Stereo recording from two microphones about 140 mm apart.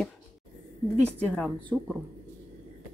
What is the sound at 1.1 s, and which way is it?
Speech, 10° left (ahead or behind).